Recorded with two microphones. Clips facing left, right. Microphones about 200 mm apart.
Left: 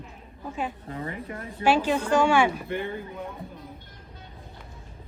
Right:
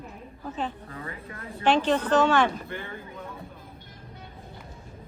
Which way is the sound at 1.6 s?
10° left (ahead or behind).